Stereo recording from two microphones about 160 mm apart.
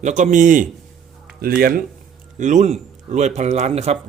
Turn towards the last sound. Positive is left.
turn(degrees=-40)  # may be behind; listen again after turning